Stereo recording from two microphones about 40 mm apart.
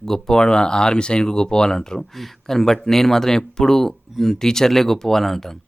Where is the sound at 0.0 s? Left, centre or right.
Centre.